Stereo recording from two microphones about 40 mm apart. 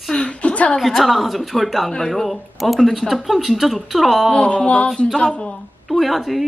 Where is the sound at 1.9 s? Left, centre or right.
Centre.